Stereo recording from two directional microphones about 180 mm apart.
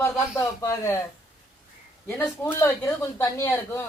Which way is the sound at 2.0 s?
10° left (ahead or behind).